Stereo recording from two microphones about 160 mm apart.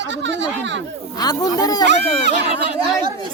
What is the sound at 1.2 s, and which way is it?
Speech, 25° left (ahead or behind).